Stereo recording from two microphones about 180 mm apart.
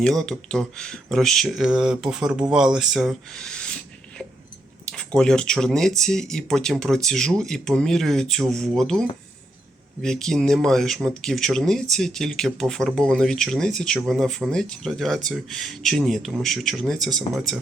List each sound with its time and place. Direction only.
0.0 s speech: 5° left (ahead or behind)
4.9 s speech: 5° left (ahead or behind)